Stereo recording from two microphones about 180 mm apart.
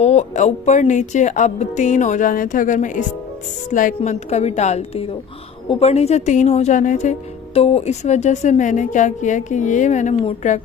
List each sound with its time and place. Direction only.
0.0 s a woman's voice: 40° left (ahead or behind)